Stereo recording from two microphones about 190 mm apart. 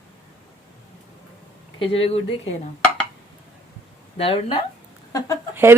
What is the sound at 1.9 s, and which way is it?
Speech, 30° left (ahead or behind).